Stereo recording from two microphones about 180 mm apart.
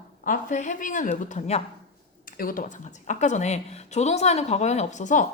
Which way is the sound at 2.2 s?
50° left (ahead or behind).